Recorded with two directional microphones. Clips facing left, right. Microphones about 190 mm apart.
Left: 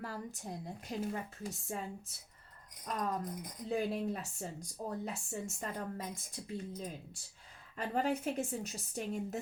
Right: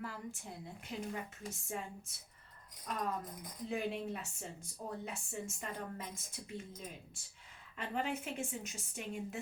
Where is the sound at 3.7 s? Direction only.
35° left (ahead or behind).